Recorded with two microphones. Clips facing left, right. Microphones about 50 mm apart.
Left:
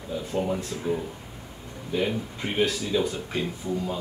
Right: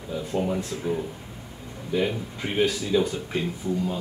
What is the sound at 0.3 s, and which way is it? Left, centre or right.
Speech, centre.